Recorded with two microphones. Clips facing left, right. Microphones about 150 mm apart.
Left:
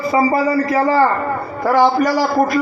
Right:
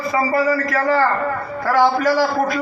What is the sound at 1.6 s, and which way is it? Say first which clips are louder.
Speech: left 2 dB; 15° left (ahead or behind).